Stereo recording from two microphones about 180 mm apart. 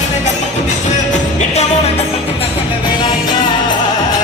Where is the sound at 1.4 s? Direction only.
35° left (ahead or behind).